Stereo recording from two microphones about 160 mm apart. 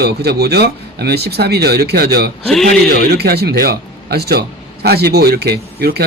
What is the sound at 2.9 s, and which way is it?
Speech, 80° right.